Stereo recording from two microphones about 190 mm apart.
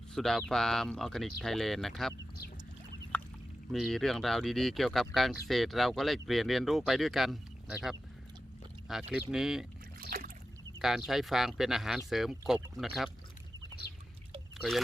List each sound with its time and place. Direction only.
0.1 s speech: centre (ahead or behind)
3.1 s a sound: 5° left (ahead or behind)
3.7 s speech: centre (ahead or behind)
10.0 s rowboat: 45° right (ahead or behind)
10.8 s speech: centre (ahead or behind)